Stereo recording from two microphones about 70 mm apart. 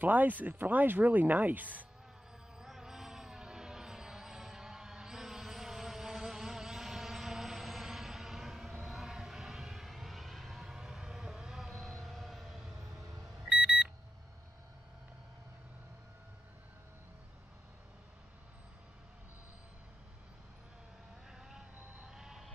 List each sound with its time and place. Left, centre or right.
0.0 s speech: right
2.6 s vehicle: centre
13.5 s alarm clock: centre
21.3 s vehicle: centre